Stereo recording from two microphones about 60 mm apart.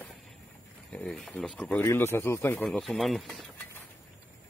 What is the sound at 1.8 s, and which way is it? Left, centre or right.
Speech, left.